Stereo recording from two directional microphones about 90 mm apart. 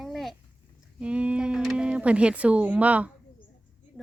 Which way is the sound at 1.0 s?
15° right (ahead or behind).